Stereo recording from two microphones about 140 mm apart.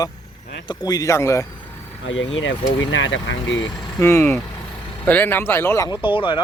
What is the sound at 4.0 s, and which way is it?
Speech, 20° left (ahead or behind).